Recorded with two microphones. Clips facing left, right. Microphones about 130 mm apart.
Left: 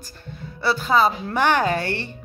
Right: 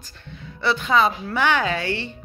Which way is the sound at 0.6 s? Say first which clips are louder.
Left 1 dB; 40° left (ahead or behind).